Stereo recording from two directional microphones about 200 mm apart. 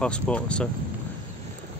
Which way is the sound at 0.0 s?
5° left (ahead or behind).